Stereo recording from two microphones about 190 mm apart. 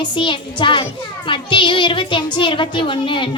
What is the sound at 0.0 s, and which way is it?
A child's voice, 25° left (ahead or behind).